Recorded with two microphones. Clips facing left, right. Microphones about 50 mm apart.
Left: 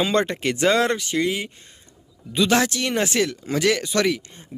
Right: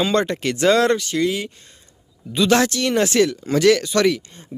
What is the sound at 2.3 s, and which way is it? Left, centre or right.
Speech, centre.